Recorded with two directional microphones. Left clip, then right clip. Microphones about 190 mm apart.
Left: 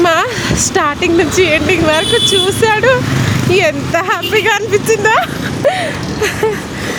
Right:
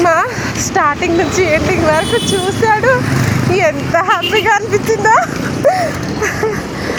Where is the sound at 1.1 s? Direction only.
45° left (ahead or behind).